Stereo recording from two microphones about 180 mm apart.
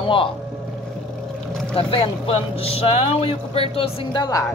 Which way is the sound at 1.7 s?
30° left (ahead or behind).